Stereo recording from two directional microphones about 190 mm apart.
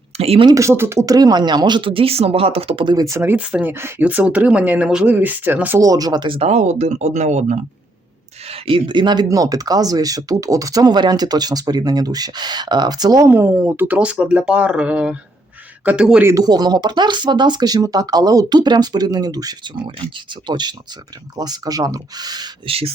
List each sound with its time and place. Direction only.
0.2 s speech: 30° right (ahead or behind)
0.5 s speech: 15° right (ahead or behind); by 7.6 s 40° right (ahead or behind)
8.4 s speech: 30° right (ahead or behind); by 16.3 s 5° right (ahead or behind)
16.3 s speech: 20° right (ahead or behind)